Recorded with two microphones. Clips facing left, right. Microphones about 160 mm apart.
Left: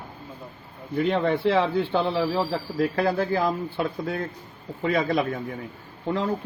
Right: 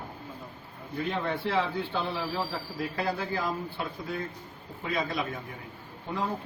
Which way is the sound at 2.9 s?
55° left (ahead or behind).